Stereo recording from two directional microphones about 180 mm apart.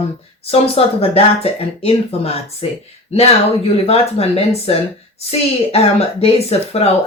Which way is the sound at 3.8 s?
35° left (ahead or behind).